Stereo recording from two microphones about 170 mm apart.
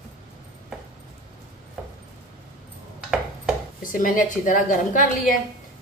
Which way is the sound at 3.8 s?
55° left (ahead or behind).